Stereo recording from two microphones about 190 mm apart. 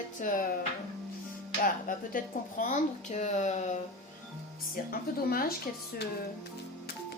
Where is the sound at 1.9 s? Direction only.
45° left (ahead or behind).